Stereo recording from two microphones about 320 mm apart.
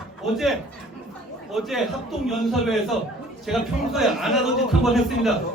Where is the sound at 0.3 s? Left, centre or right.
Centre.